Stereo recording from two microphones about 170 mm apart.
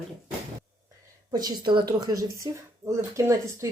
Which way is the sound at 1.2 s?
25° right (ahead or behind).